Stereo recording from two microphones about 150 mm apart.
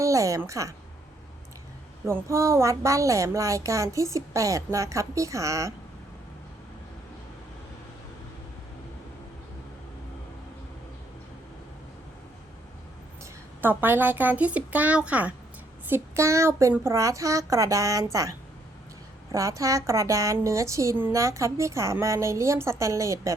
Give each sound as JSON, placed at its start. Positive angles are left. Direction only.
{"t": 0.0, "sound": "a woman's voice", "side_deg": -20}
{"t": 2.0, "sound": "a woman's voice", "side_deg": -20}
{"t": 13.6, "sound": "a woman's voice", "side_deg": -15}